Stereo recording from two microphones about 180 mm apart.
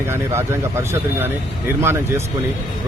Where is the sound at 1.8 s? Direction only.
15° right (ahead or behind).